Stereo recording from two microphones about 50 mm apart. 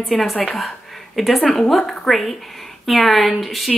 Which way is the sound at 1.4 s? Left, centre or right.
Centre.